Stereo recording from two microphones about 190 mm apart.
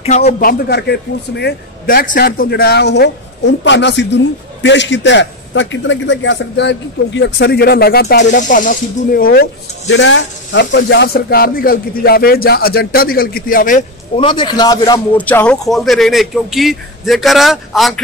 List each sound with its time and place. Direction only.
0.3 s a man's voice: 50° left (ahead or behind)
8.3 s speech: 40° left (ahead or behind)
14.1 s a man's voice: 25° left (ahead or behind)
15.1 s speech: 10° left (ahead or behind)